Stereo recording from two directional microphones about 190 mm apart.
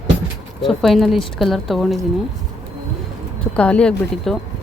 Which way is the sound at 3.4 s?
5° left (ahead or behind).